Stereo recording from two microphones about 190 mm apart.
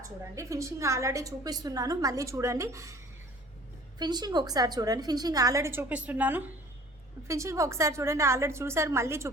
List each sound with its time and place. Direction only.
0.0 s a woman's voice: 15° right (ahead or behind)